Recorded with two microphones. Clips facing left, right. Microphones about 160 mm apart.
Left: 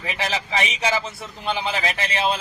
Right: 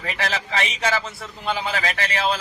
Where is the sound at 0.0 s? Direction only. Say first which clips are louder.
Even; 15° left (ahead or behind).